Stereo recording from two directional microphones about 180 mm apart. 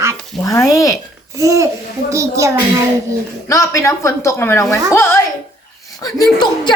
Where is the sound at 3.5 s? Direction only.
15° left (ahead or behind).